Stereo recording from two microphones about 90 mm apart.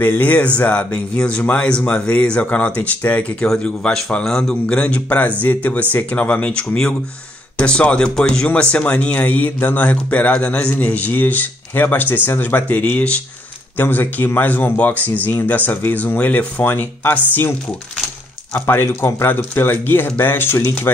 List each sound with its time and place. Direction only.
0.0 s speech: 20° left (ahead or behind)